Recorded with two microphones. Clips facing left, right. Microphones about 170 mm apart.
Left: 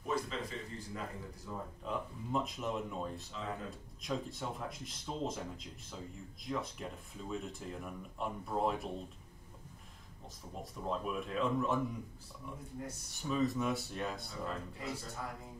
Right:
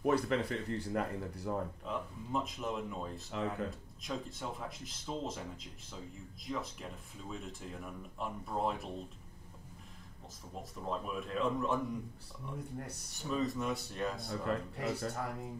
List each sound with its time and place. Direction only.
0.0 s speech: 65° right (ahead or behind)
1.9 s speech: centre (ahead or behind)
3.3 s speech: 70° right (ahead or behind)
4.0 s speech: centre (ahead or behind)
10.6 s speech: centre (ahead or behind)
13.1 s speech: centre (ahead or behind)
14.3 s speech: 70° right (ahead or behind)